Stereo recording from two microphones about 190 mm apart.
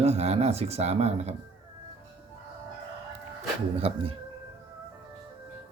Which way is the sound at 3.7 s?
30° right (ahead or behind).